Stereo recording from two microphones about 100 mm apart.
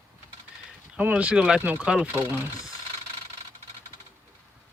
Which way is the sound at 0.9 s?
15° right (ahead or behind).